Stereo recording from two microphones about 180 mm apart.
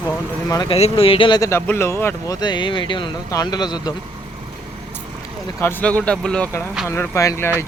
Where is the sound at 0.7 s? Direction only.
30° left (ahead or behind).